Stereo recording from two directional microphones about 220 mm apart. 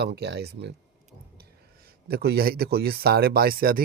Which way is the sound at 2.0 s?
45° right (ahead or behind).